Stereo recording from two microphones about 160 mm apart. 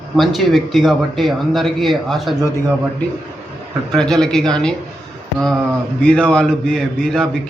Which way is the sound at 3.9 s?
5° left (ahead or behind).